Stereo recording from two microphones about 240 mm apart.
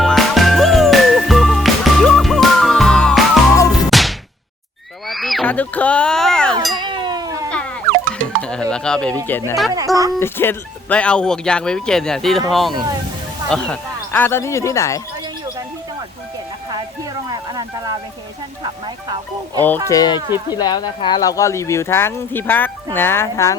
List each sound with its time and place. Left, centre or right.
0.0 s music: centre
5.0 s a sound: centre
6.7 s cat: centre
8.1 s a sound: centre
8.7 s speech: centre
9.7 s speech: centre
10.2 s speech: centre
16.6 s a sound: centre
19.6 s speech: centre